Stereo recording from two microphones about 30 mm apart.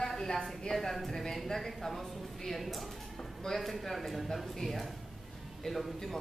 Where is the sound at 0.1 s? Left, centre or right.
Centre.